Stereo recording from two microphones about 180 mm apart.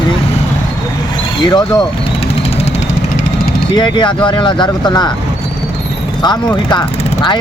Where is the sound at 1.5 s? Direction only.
25° left (ahead or behind).